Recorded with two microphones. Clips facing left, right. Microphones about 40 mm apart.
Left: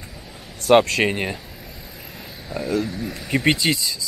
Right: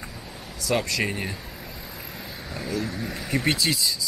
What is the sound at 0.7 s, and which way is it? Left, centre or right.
Speech, left.